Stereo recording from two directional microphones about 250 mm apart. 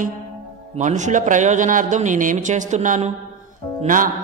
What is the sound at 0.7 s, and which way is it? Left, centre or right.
Music, right.